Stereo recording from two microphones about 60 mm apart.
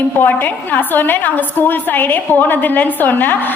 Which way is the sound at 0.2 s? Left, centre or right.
Left.